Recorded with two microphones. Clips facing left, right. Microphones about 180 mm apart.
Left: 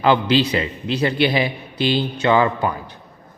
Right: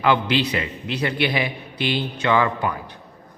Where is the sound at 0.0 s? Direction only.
30° left (ahead or behind).